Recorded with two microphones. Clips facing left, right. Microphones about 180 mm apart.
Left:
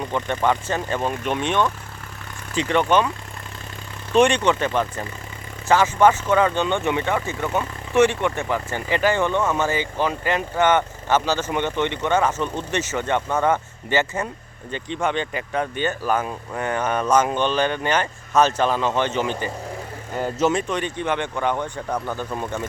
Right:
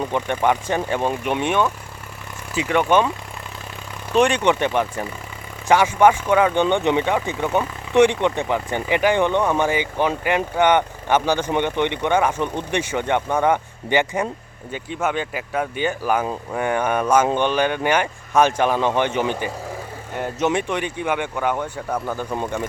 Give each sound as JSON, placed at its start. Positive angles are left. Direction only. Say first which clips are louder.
{"t": 0.1, "sound": "speech", "louder": "left 1 dB", "side_deg": -15}
{"t": 4.1, "sound": "speech", "louder": "left 1 dB", "side_deg": -5}
{"t": 4.4, "sound": "speech", "louder": "right 2 dB", "side_deg": -15}
{"t": 20.7, "sound": "speech", "louder": "right 1 dB", "side_deg": -10}